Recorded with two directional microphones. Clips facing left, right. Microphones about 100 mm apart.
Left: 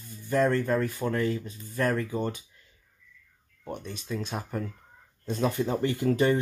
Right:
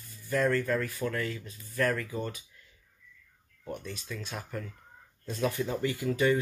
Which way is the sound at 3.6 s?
25° left (ahead or behind).